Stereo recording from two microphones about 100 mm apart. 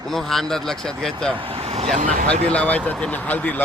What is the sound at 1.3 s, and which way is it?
Vehicle, 70° right (ahead or behind).